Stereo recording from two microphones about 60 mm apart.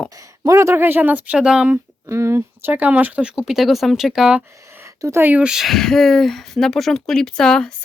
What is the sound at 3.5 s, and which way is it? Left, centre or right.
Speech, centre.